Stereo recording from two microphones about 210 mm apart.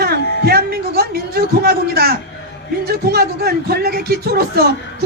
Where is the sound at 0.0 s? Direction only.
50° right (ahead or behind).